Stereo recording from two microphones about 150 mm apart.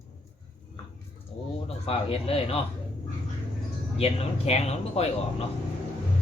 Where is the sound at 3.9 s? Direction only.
40° left (ahead or behind).